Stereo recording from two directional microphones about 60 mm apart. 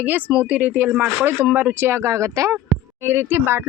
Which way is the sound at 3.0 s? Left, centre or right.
Right.